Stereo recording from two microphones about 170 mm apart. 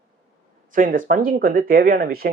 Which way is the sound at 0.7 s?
55° right (ahead or behind).